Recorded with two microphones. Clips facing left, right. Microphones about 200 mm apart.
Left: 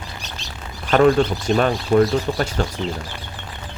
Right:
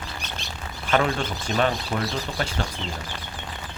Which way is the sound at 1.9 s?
45° left (ahead or behind).